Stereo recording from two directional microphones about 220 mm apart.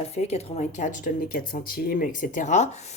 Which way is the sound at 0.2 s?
30° left (ahead or behind).